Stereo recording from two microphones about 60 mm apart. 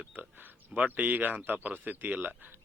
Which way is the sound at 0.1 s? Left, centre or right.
Right.